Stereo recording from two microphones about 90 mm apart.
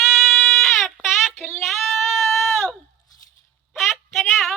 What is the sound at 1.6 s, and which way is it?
Sheep, 5° right (ahead or behind).